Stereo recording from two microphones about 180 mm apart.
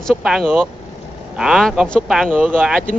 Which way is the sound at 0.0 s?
5° right (ahead or behind).